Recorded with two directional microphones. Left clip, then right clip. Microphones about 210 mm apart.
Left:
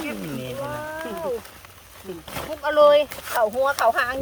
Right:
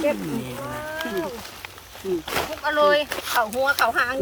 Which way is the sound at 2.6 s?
45° left (ahead or behind).